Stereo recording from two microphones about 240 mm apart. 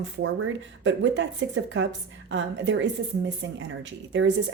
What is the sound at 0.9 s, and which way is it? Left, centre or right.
A woman's voice, right.